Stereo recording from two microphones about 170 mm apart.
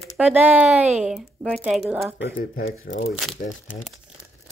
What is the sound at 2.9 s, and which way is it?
Speech, 65° left (ahead or behind).